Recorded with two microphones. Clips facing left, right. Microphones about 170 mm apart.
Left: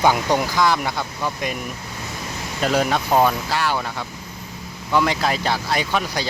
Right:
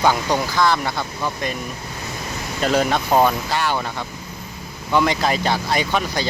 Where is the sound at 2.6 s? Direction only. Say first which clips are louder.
Right 1 dB; 5° left (ahead or behind).